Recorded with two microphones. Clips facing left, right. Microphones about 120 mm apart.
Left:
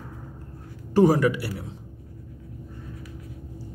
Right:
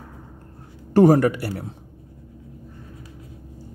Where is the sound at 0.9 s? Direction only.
55° right (ahead or behind).